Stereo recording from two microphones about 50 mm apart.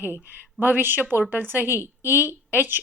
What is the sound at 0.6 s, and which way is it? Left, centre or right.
Speech, right.